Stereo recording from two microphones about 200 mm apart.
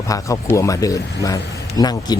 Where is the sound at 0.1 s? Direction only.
15° left (ahead or behind).